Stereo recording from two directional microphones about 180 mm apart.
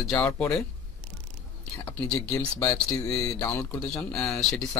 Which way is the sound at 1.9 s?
10° left (ahead or behind).